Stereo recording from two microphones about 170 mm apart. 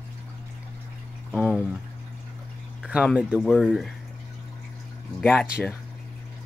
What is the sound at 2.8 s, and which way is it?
Speech, 5° right (ahead or behind).